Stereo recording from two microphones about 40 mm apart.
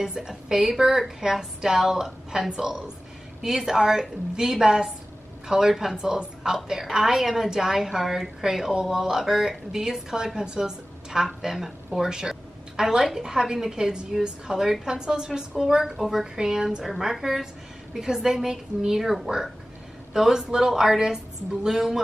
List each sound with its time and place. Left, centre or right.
0.0 s a woman's voice: centre